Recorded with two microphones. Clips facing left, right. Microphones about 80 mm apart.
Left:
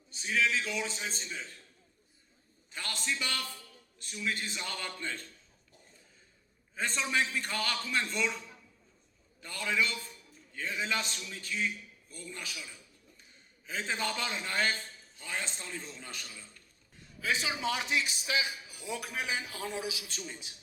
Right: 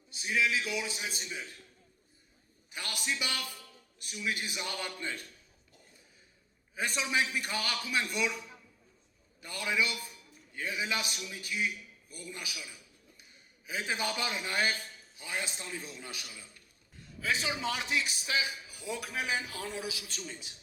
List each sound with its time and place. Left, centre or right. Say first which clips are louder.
0.1 s a man's voice: even; centre
2.6 s a man's voice: even; centre
6.7 s a man's voice: even; centre
9.4 s a man's voice: even; centre
17.2 s a man's voice: even; centre
19.5 s a man's voice: left 1 dB; left